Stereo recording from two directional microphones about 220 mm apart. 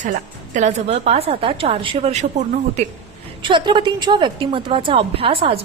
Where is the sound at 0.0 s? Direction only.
35° right (ahead or behind).